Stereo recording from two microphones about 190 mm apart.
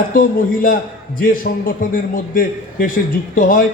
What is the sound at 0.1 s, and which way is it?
A man's voice, 45° left (ahead or behind).